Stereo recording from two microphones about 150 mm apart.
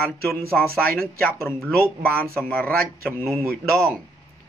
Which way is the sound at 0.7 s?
85° right.